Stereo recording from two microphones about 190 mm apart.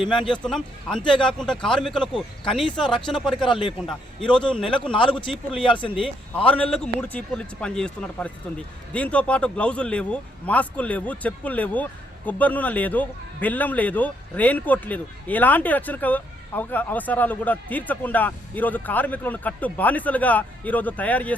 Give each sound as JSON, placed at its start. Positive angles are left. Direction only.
{"t": 0.4, "sound": "a man's voice", "side_deg": 5}
{"t": 3.4, "sound": "a man's voice", "side_deg": 25}
{"t": 3.8, "sound": "a man's voice", "side_deg": 5}
{"t": 4.9, "sound": "a man's voice", "side_deg": 25}
{"t": 6.0, "sound": "a man's voice", "side_deg": 5}